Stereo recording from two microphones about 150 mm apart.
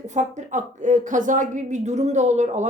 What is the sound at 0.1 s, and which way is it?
Speech, 55° right (ahead or behind).